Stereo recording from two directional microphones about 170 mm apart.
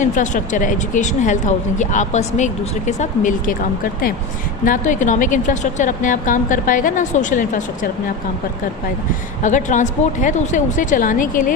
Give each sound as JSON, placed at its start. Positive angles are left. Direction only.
{"t": 0.0, "sound": "speech", "side_deg": 50}
{"t": 4.6, "sound": "speech", "side_deg": 50}
{"t": 9.4, "sound": "speech", "side_deg": 45}